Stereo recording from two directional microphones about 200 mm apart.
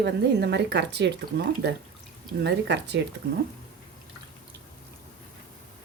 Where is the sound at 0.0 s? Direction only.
55° right (ahead or behind).